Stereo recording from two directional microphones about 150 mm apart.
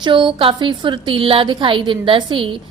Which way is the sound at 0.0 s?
35° right (ahead or behind).